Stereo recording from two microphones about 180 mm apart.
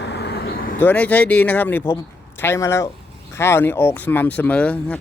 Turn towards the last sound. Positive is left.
turn(degrees=5)  # may be behind; listen again after turning